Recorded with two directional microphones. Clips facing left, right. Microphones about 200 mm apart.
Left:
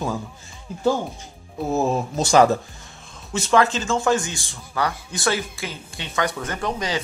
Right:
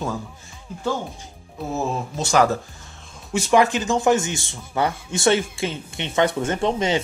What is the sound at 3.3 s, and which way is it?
A man's voice, 15° right (ahead or behind).